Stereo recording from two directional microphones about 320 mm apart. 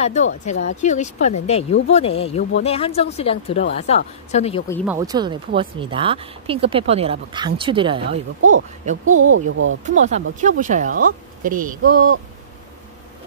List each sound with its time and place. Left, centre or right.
0.0 s speech: left
4.8 s speech: centre
9.0 s speech: right
9.8 s speech: right